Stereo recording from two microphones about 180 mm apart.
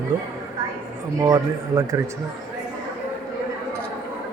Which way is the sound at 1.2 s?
20° right (ahead or behind).